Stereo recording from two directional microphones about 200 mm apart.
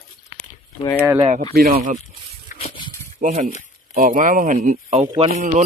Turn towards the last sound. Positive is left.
turn(degrees=-40)  # may be behind; listen again after turning